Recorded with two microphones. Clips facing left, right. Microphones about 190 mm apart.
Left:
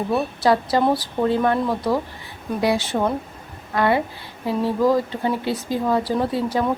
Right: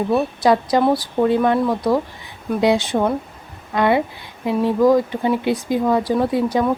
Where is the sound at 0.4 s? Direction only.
15° right (ahead or behind).